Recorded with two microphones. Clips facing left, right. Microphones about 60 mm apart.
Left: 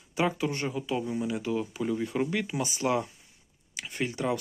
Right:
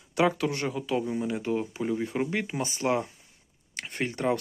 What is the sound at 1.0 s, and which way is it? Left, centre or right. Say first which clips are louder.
Speech: right 1 dB; right.